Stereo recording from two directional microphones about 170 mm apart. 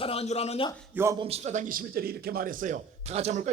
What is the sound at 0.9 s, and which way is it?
Speech, 15° right (ahead or behind).